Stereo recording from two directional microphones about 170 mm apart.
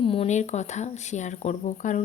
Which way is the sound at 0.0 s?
35° left (ahead or behind).